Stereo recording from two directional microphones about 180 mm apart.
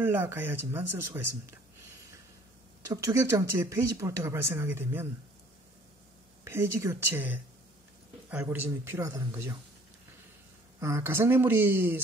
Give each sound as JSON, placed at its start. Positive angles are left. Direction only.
{"t": 0.0, "sound": "speech", "side_deg": -10}
{"t": 2.9, "sound": "speech", "side_deg": -20}
{"t": 6.4, "sound": "speech", "side_deg": -15}
{"t": 8.3, "sound": "speech", "side_deg": -10}
{"t": 10.8, "sound": "speech", "side_deg": -15}